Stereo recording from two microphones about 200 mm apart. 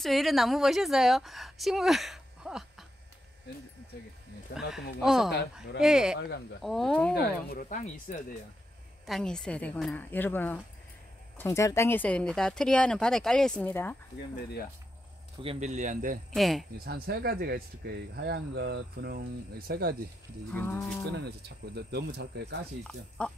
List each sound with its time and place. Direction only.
0.0 s a woman's voice: centre (ahead or behind)
4.6 s a woman's voice: centre (ahead or behind)
7.2 s speech: 45° left (ahead or behind)
9.0 s a woman's voice: centre (ahead or behind)
15.4 s speech: 35° right (ahead or behind)
16.3 s a woman's voice: centre (ahead or behind)
16.7 s speech: 50° right (ahead or behind)
20.5 s speech: 10° left (ahead or behind)
21.1 s speech: 55° right (ahead or behind)
22.8 s a woman's voice: 5° left (ahead or behind)